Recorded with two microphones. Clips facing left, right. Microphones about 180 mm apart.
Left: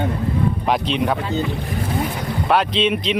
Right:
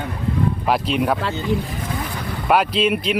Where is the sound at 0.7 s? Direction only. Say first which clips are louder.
Right 1 dB; 5° right (ahead or behind).